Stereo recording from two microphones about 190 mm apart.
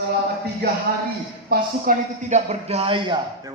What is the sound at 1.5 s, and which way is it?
A man's voice, 40° right (ahead or behind).